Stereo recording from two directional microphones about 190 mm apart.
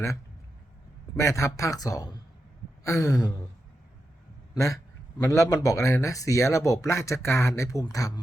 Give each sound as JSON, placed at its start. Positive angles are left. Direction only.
{"t": 1.1, "sound": "speech", "side_deg": 15}
{"t": 4.5, "sound": "speech", "side_deg": 15}